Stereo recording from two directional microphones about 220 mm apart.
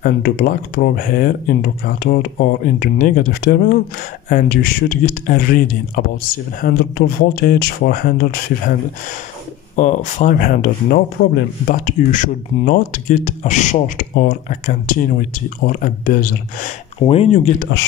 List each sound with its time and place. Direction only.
0.0 s speech: 40° left (ahead or behind)
9.8 s speech: 35° left (ahead or behind)
11.2 s speech: 55° left (ahead or behind)
11.6 s speech: 35° left (ahead or behind)
17.0 s speech: 25° left (ahead or behind)
17.6 s speech: 50° left (ahead or behind)